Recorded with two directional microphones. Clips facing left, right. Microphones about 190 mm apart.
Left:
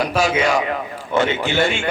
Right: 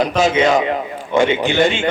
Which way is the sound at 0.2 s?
20° right (ahead or behind).